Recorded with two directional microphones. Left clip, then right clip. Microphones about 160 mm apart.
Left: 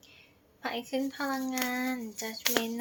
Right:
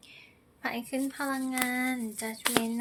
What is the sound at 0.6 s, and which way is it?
A woman's voice, 15° right (ahead or behind).